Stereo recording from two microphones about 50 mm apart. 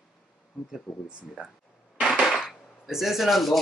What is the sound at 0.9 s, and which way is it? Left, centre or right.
Speech, left.